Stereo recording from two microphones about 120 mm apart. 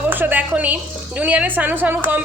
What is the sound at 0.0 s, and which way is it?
Music, 15° right (ahead or behind).